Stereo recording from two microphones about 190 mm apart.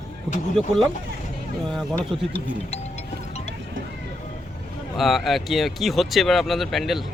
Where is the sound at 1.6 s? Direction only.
Centre (ahead or behind).